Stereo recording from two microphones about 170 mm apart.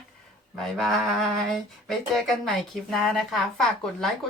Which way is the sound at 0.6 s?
Centre (ahead or behind).